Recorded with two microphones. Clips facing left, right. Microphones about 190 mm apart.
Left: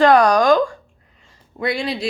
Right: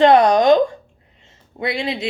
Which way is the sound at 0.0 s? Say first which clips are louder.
Right 1 dB; 20° right (ahead or behind).